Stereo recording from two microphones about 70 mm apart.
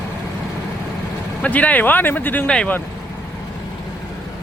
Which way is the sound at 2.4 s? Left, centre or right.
Centre.